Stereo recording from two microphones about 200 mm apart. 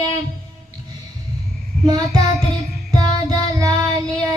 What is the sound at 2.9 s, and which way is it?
Music, 20° right (ahead or behind).